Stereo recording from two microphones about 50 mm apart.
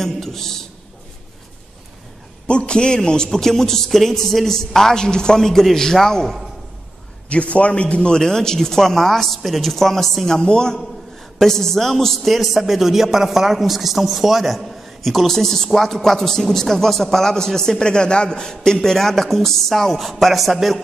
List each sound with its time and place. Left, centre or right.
0.0 s a man's voice: centre
2.4 s a man's voice: left
7.2 s a man's voice: left
8.2 s a man's voice: centre